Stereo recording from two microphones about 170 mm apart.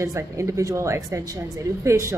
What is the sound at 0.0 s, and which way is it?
A woman's voice, 15° right (ahead or behind).